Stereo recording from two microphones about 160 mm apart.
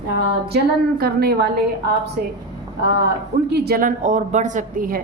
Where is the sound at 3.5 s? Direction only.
80° right; by 5.0 s 55° right (ahead or behind).